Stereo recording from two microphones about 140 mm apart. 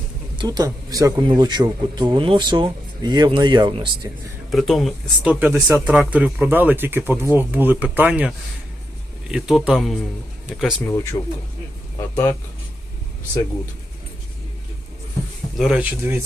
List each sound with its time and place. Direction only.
0.3 s speech: 30° right (ahead or behind)
4.5 s speech: centre (ahead or behind)
5.3 s speech: 10° right (ahead or behind)
9.3 s speech: 5° right (ahead or behind)
10.8 s speech: 20° left (ahead or behind)
15.5 s speech: 5° right (ahead or behind)